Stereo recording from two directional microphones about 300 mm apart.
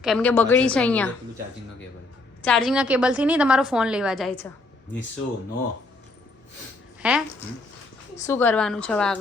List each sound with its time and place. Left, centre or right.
0.0 s a woman's voice: centre
2.4 s a woman's voice: centre
7.0 s a woman's voice: centre
8.1 s a woman's voice: centre